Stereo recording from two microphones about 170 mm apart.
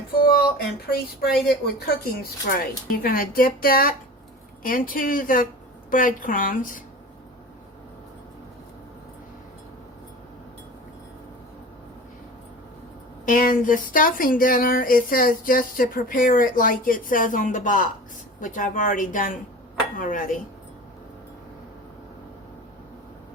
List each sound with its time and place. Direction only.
0.1 s a sound: 65° left (ahead or behind)
0.9 s speech: 65° left (ahead or behind)
13.2 s speech: 55° left (ahead or behind)